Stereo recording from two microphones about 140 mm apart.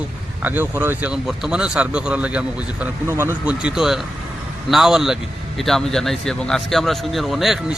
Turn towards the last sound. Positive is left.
turn(degrees=0)  # may be behind; listen again after turning